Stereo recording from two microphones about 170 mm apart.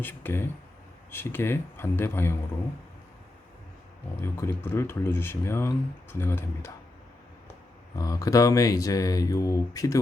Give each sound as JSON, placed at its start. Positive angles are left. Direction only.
{"t": 0.0, "sound": "speech", "side_deg": 10}
{"t": 4.2, "sound": "speech", "side_deg": 15}
{"t": 7.9, "sound": "speech", "side_deg": 20}